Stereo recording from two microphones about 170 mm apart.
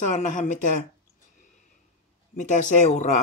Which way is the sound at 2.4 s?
45° left (ahead or behind).